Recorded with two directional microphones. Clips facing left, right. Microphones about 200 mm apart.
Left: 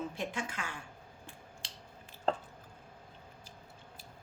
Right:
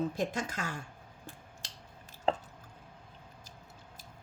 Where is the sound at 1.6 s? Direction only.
40° right (ahead or behind).